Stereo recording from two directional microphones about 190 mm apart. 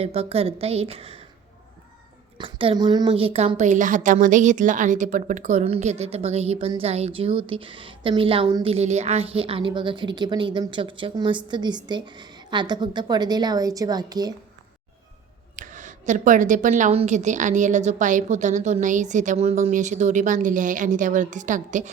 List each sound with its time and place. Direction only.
0.0 s a woman's voice: 30° right (ahead or behind)
2.4 s a woman's voice: 30° right (ahead or behind)
15.5 s a woman's voice: 40° right (ahead or behind)